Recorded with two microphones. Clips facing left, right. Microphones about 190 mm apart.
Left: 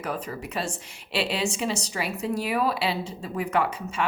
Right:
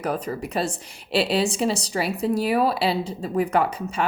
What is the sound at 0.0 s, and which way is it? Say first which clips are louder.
A woman's voice: right 5 dB; 40° right (ahead or behind).